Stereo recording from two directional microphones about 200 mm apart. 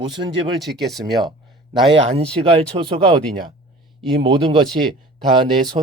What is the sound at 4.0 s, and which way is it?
Speech, 25° right (ahead or behind).